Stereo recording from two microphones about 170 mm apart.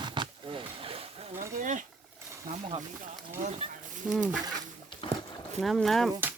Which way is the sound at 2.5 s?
35° right (ahead or behind).